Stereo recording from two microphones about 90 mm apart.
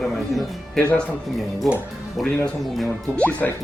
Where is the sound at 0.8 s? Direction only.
15° left (ahead or behind).